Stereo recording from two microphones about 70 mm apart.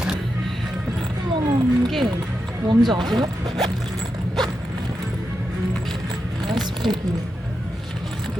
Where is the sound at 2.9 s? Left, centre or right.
Right.